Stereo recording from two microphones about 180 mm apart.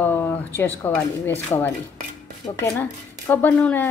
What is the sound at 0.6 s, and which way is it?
A woman's voice, 10° left (ahead or behind).